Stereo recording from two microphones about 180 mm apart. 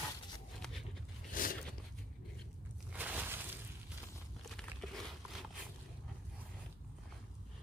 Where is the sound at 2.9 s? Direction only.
10° right (ahead or behind).